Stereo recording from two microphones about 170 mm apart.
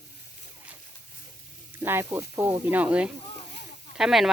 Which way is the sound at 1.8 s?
15° right (ahead or behind).